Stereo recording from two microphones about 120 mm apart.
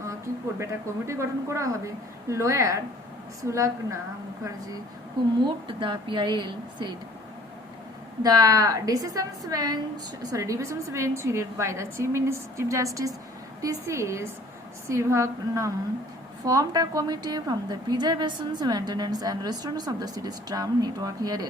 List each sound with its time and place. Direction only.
0.6 s a woman's voice: 25° right (ahead or behind)
5.5 s a woman's voice: 40° right (ahead or behind)
8.2 s a woman's voice: 30° right (ahead or behind)